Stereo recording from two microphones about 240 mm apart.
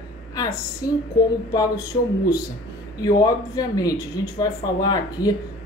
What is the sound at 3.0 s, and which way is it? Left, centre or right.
Speech, centre.